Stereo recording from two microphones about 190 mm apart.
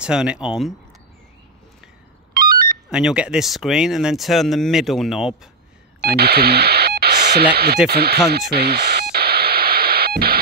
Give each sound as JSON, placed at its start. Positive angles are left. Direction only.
{"t": 0.0, "sound": "speech", "side_deg": -5}
{"t": 2.3, "sound": "a sound", "side_deg": -50}
{"t": 2.9, "sound": "speech", "side_deg": -5}
{"t": 6.1, "sound": "radio", "side_deg": -55}
{"t": 7.9, "sound": "speech", "side_deg": -55}
{"t": 9.1, "sound": "music", "side_deg": -55}